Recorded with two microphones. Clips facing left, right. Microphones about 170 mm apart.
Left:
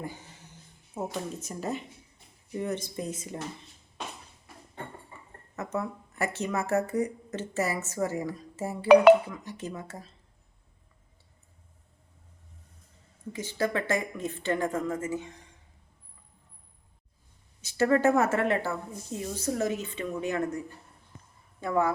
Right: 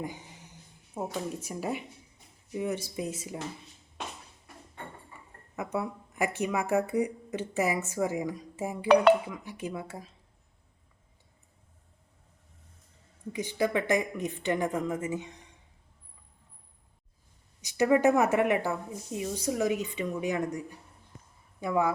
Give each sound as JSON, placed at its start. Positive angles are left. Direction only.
{"t": 0.0, "sound": "a sound", "side_deg": -15}
{"t": 0.9, "sound": "speech", "side_deg": -10}
{"t": 5.5, "sound": "speech", "side_deg": -15}
{"t": 8.9, "sound": "speech", "side_deg": 5}
{"t": 9.2, "sound": "speech", "side_deg": -10}
{"t": 13.3, "sound": "speech", "side_deg": -15}
{"t": 17.6, "sound": "speech", "side_deg": -15}